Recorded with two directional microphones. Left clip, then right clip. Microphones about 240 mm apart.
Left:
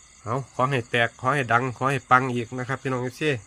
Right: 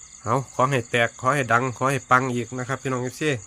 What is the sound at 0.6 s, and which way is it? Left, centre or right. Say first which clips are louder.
Speech: even; centre.